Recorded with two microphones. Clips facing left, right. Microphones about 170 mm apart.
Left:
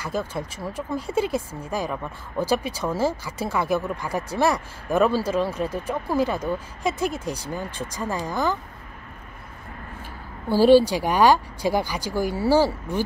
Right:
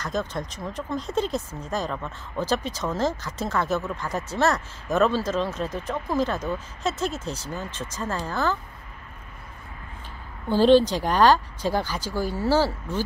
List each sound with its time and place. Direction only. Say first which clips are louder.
0.0 s speech: left 1 dB; 10° left (ahead or behind)
10.5 s speech: left 2 dB; 10° left (ahead or behind)